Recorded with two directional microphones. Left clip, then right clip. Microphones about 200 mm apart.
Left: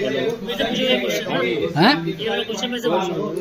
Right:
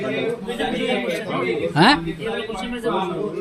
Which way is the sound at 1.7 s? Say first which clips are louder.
Right 2 dB; 20° right (ahead or behind).